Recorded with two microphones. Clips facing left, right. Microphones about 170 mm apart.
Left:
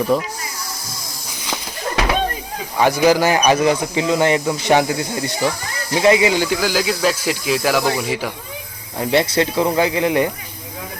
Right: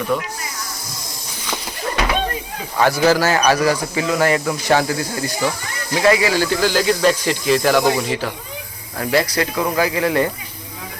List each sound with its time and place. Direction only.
0.1 s speech: 35° left (ahead or behind)
2.7 s speech: 15° left (ahead or behind)
9.0 s speech: 25° left (ahead or behind)